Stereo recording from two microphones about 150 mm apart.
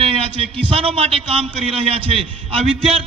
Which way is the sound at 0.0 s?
40° right (ahead or behind).